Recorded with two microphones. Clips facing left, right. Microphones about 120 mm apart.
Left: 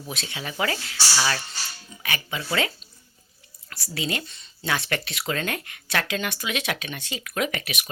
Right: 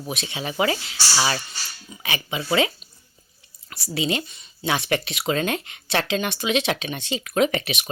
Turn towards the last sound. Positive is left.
turn(degrees=-25)  # may be behind; listen again after turning